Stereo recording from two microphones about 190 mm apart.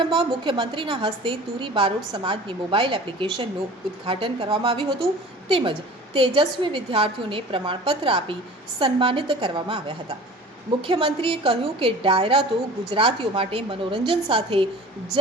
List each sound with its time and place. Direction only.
0.0 s a woman's voice: 25° right (ahead or behind)